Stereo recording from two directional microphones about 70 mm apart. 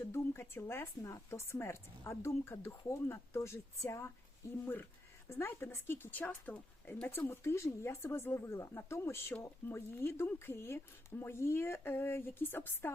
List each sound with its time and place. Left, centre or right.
0.0 s speech: left
1.0 s speech: left
7.2 s speech: left